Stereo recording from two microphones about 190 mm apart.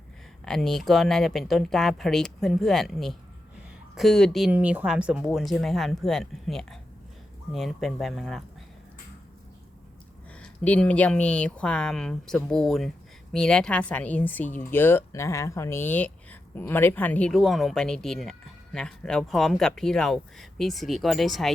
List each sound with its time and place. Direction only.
0.4 s speech: centre (ahead or behind)
10.3 s speech: 5° left (ahead or behind)